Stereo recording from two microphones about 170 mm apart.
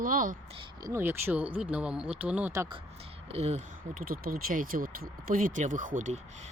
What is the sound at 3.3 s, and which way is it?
Speech, 40° right (ahead or behind).